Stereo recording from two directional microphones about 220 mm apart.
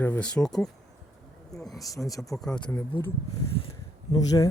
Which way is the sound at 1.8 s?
15° left (ahead or behind).